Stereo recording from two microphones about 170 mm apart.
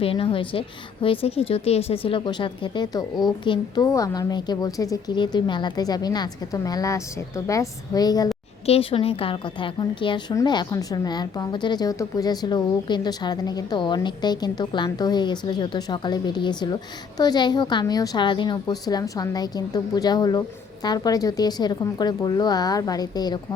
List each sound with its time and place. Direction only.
0.0 s a woman's voice: 30° left (ahead or behind)
8.6 s a woman's voice: 35° left (ahead or behind)